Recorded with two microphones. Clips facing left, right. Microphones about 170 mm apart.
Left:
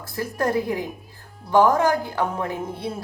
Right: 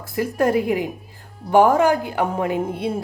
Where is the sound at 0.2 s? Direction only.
15° right (ahead or behind).